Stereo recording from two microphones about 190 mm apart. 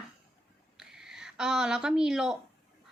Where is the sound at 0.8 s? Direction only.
Centre (ahead or behind).